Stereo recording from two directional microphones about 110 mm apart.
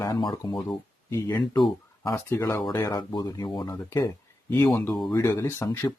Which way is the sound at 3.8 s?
25° left (ahead or behind).